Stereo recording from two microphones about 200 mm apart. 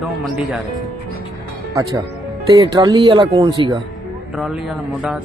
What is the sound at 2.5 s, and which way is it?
Speech, 20° right (ahead or behind).